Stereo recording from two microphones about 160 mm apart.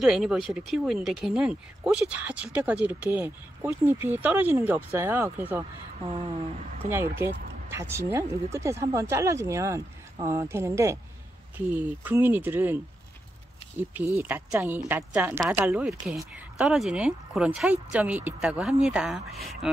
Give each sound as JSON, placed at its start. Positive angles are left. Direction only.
{"t": 0.0, "sound": "speech", "side_deg": -5}
{"t": 6.9, "sound": "speech", "side_deg": -15}
{"t": 14.1, "sound": "speech", "side_deg": -10}